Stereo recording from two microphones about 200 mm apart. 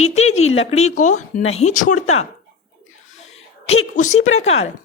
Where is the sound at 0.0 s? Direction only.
35° left (ahead or behind).